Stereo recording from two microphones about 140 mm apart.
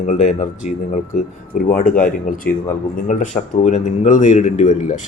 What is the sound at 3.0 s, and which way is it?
A man's voice, 65° left (ahead or behind).